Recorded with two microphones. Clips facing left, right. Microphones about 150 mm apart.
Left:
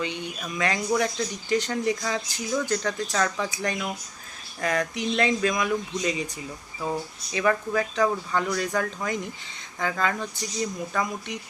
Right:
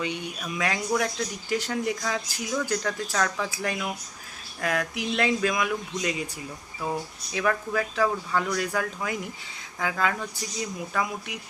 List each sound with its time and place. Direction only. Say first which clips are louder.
0.3 s speech: left 3 dB; 5° right (ahead or behind)